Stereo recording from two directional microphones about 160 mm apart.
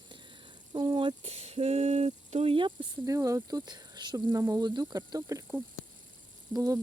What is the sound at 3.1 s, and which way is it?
Speech, 20° right (ahead or behind).